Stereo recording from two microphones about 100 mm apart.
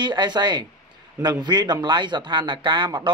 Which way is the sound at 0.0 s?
50° right (ahead or behind).